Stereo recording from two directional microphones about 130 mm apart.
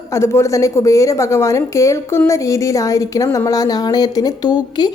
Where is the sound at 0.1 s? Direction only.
20° left (ahead or behind).